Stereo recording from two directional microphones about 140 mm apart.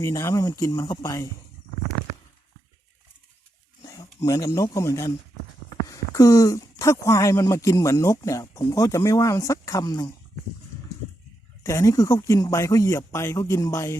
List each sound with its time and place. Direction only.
0.0 s speech: 25° left (ahead or behind)
3.8 s speech: 25° left (ahead or behind)
11.6 s speech: 25° left (ahead or behind)